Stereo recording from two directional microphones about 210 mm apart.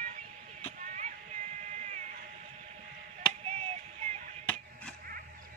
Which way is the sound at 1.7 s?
35° right (ahead or behind).